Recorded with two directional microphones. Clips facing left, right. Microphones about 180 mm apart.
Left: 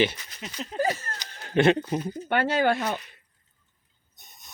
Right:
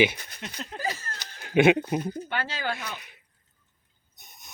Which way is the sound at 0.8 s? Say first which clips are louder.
Left 7 dB; 60° left (ahead or behind).